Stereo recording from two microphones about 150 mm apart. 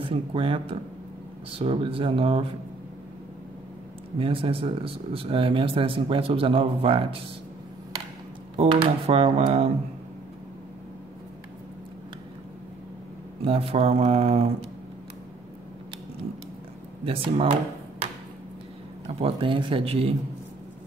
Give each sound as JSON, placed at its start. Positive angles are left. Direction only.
{"t": 0.0, "sound": "a man's voice", "side_deg": -35}
{"t": 4.2, "sound": "a man's voice", "side_deg": -35}
{"t": 8.5, "sound": "a man's voice", "side_deg": -40}
{"t": 13.4, "sound": "a man's voice", "side_deg": -40}
{"t": 17.0, "sound": "a man's voice", "side_deg": -35}
{"t": 19.0, "sound": "a man's voice", "side_deg": -35}